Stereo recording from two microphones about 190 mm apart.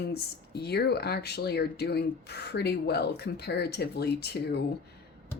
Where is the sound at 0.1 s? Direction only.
60° left (ahead or behind).